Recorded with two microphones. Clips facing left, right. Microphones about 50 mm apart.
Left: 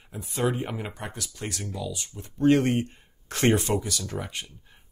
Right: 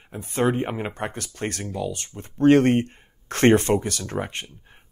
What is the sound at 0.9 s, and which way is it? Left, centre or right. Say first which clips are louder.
Speech: right 6 dB; right.